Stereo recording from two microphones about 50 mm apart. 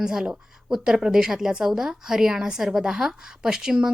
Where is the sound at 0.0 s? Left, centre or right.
Centre.